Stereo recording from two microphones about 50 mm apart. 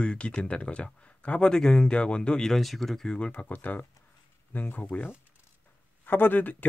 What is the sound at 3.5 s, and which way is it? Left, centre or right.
Speech, left.